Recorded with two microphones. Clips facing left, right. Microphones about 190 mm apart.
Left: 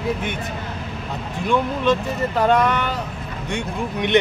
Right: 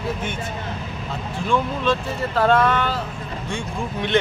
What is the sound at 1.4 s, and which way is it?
Speech, 15° left (ahead or behind).